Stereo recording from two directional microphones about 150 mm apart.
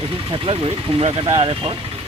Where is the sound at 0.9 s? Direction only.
40° right (ahead or behind).